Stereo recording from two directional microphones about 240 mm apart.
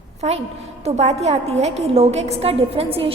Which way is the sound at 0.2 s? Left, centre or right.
Right.